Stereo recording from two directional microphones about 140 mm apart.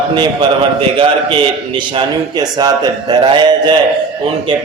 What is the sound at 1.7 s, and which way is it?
A man's voice, 35° right (ahead or behind).